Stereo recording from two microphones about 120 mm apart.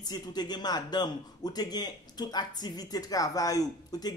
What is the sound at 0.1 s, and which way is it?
A man's voice, 35° left (ahead or behind).